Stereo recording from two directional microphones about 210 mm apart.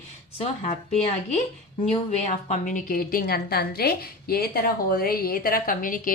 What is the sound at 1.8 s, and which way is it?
A woman's voice, 30° left (ahead or behind).